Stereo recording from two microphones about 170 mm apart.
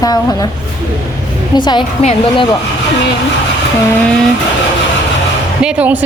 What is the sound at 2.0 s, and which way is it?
Speech, 35° left (ahead or behind).